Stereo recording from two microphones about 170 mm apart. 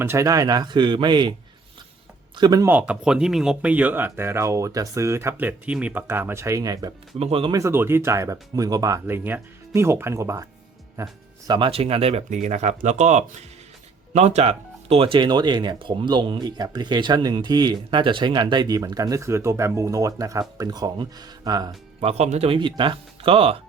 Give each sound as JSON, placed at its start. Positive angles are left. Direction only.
{"t": 0.0, "sound": "speech", "side_deg": -15}
{"t": 2.3, "sound": "speech", "side_deg": -25}
{"t": 2.6, "sound": "speech", "side_deg": -10}
{"t": 7.2, "sound": "speech", "side_deg": -35}
{"t": 7.5, "sound": "speech", "side_deg": -15}
{"t": 22.0, "sound": "speech", "side_deg": -40}